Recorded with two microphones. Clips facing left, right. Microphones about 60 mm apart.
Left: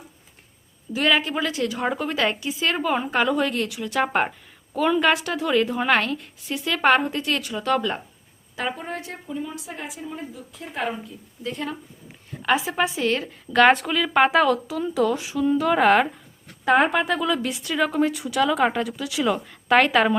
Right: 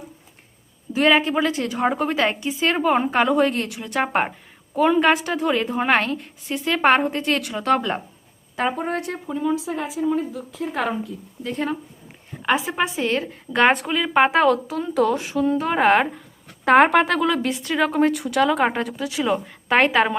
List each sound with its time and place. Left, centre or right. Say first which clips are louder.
0.9 s a woman's voice: right 4 dB; right
11.4 s a woman's voice: right 4 dB; right
12.4 s a sound: right 1 dB; right
12.7 s a woman's voice: right 1 dB; right
14.3 s a woman's voice: right 2 dB; right
15.6 s a woman's voice: left 1 dB; right
16.6 s a woman's voice: right 4 dB; right